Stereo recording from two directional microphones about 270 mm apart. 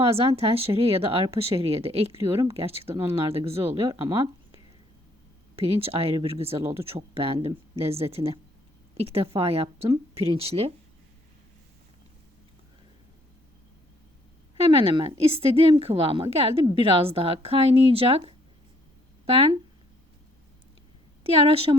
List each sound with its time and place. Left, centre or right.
0.0 s speech: right
14.5 s speech: right
21.3 s speech: centre